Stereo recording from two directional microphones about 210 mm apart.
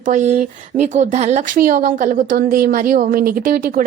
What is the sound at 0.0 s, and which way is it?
Speech, 35° right (ahead or behind).